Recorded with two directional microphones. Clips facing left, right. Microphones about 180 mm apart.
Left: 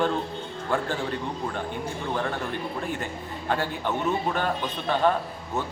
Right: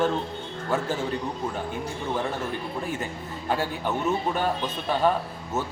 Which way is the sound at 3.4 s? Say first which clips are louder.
Even; 10° right (ahead or behind).